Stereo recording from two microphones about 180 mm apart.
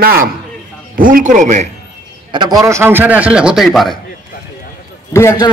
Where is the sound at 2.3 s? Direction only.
20° right (ahead or behind); by 3.9 s centre (ahead or behind).